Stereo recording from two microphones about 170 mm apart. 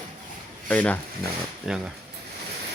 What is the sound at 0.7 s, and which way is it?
Speech, 10° left (ahead or behind).